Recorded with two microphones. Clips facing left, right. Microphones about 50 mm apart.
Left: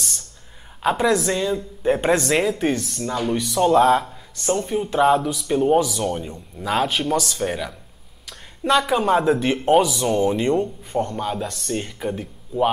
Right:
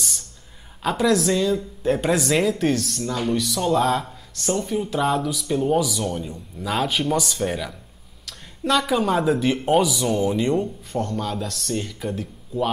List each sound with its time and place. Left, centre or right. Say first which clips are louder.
0.8 s speech: left 1 dB; centre
2.2 s speech: even; centre
4.0 s a woman's voice: left 1 dB; centre
10.5 s speech: left 2 dB; centre
11.0 s speech: left 2 dB; centre